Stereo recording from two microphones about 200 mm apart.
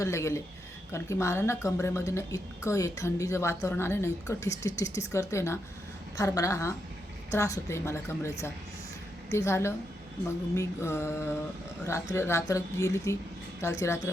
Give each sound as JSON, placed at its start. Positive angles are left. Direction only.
{"t": 0.0, "sound": "speech", "side_deg": 15}